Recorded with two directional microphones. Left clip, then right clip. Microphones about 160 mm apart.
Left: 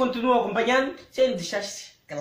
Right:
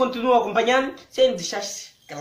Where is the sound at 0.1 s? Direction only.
20° right (ahead or behind).